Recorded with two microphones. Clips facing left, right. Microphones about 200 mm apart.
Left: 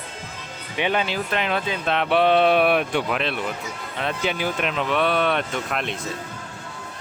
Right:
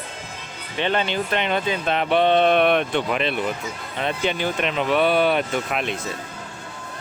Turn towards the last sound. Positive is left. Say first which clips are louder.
# right 2 dB
turn(degrees=-5)  # may be behind; listen again after turning